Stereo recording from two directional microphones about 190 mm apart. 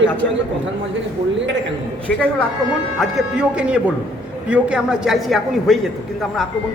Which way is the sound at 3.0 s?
5° right (ahead or behind).